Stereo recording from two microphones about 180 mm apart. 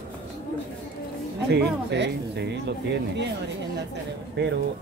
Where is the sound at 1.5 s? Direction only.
70° right (ahead or behind).